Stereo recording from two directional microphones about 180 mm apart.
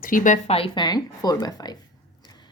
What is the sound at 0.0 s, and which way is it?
Speech, 45° left (ahead or behind).